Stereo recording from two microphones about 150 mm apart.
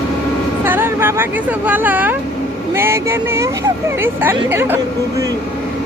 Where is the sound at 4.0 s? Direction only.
15° right (ahead or behind).